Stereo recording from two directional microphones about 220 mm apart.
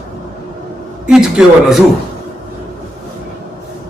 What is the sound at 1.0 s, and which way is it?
Speech, 5° right (ahead or behind).